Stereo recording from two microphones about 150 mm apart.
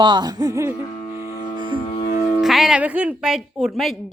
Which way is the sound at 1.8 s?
30° left (ahead or behind).